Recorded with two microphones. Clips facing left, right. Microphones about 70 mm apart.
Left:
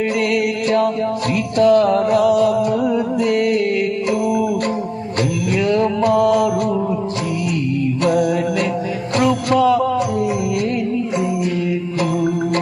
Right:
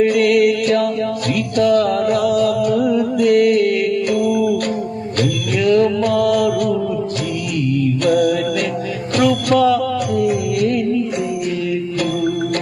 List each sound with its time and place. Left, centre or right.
0.0 s mantra: left
1.5 s music: left
5.5 s music: left
8.0 s music: left